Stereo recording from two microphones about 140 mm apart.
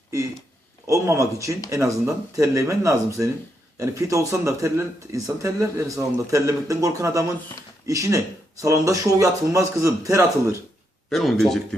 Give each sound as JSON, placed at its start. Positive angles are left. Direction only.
{"t": 0.9, "sound": "speech", "side_deg": -20}
{"t": 11.1, "sound": "speech", "side_deg": 0}